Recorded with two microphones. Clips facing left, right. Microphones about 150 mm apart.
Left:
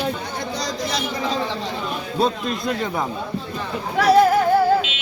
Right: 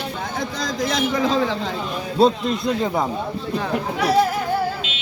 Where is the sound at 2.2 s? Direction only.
25° right (ahead or behind).